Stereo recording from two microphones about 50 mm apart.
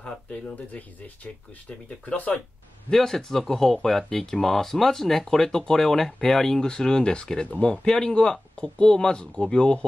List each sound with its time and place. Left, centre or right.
0.0 s speech: centre
0.7 s speech: left
2.9 s speech: centre